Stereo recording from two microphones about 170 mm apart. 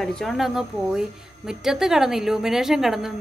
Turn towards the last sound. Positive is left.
turn(degrees=0)  # may be behind; listen again after turning